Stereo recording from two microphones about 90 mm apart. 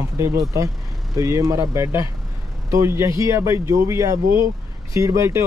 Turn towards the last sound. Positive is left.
turn(degrees=-35)  # may be behind; listen again after turning